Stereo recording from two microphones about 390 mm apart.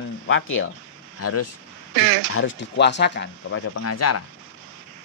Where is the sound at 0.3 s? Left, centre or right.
Left.